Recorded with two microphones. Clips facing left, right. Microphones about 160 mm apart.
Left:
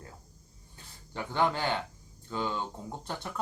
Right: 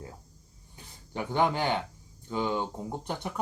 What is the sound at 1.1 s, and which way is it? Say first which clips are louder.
Speech: right 2 dB; 15° right (ahead or behind).